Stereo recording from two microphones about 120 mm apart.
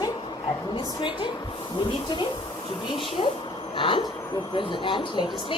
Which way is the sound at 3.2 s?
50° left (ahead or behind).